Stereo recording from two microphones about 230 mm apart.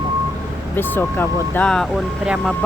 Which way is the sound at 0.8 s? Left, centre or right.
Centre.